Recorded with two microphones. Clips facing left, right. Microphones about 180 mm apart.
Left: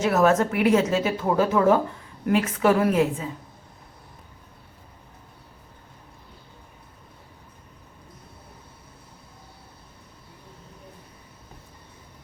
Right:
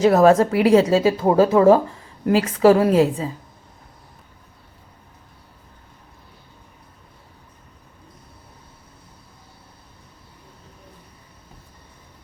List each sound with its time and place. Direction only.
0.0 s a woman's voice: 35° right (ahead or behind)